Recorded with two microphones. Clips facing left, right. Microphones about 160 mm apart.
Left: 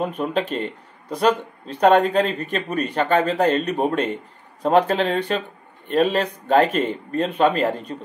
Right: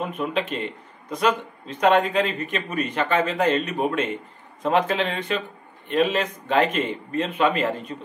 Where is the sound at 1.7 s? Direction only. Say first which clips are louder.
Left 3 dB; 35° left (ahead or behind).